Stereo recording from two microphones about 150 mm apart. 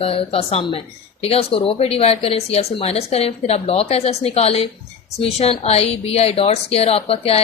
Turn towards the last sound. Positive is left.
turn(degrees=40)  # may be behind; listen again after turning